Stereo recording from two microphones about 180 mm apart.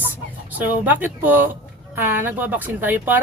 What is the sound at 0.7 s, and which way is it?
Speech, 10° right (ahead or behind).